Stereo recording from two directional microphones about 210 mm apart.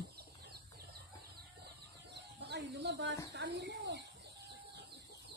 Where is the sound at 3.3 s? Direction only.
55° right (ahead or behind).